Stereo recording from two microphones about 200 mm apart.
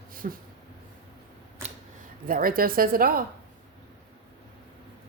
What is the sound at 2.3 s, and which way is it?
Speech, 45° right (ahead or behind).